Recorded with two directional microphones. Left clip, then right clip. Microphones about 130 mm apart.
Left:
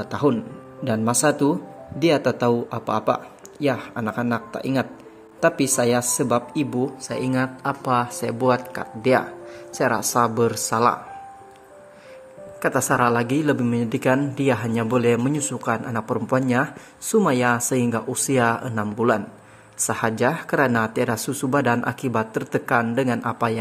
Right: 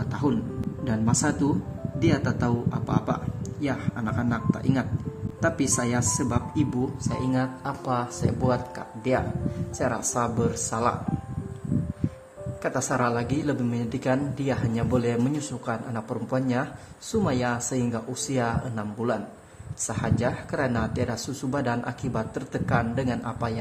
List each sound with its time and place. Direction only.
0.1 s a man's voice: 30° left (ahead or behind)
12.6 s a man's voice: 35° left (ahead or behind)